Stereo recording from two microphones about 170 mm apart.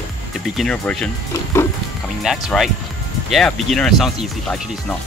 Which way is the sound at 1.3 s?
15° left (ahead or behind).